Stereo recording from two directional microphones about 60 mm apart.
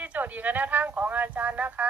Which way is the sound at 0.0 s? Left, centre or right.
Right.